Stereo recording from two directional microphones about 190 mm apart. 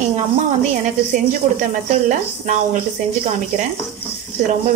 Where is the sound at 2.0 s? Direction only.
40° right (ahead or behind).